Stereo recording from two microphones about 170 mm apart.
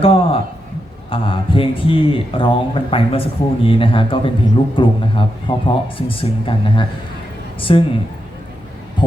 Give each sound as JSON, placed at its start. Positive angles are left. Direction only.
{"t": 0.0, "sound": "a sound", "side_deg": 35}
{"t": 1.1, "sound": "a man's voice", "side_deg": 30}
{"t": 9.0, "sound": "heart sounds", "side_deg": 25}